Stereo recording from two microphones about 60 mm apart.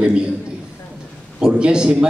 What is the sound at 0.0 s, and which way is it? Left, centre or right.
Speech, centre.